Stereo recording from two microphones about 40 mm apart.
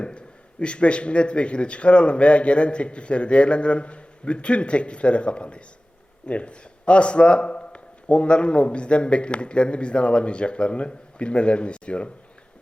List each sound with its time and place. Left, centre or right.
0.0 s speech: left